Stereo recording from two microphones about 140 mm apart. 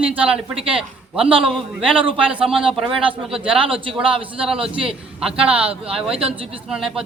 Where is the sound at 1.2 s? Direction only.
40° right (ahead or behind).